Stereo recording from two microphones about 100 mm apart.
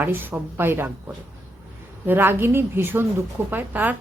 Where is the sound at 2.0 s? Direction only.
20° right (ahead or behind).